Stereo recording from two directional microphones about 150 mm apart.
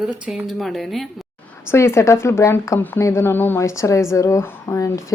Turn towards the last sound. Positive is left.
turn(degrees=20)  # may be behind; listen again after turning